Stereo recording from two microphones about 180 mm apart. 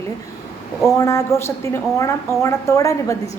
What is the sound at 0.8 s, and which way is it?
A woman's voice, 15° left (ahead or behind).